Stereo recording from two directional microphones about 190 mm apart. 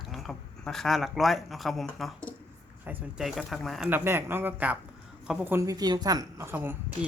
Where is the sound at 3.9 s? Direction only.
10° right (ahead or behind).